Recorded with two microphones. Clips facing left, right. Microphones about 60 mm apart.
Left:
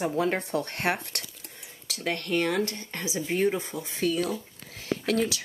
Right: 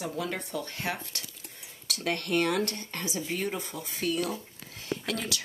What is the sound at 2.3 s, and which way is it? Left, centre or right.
Speech, left.